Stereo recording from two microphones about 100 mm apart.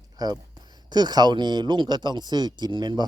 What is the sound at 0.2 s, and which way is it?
Speech, 40° right (ahead or behind).